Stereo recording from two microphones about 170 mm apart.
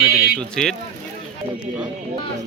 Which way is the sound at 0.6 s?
5° left (ahead or behind).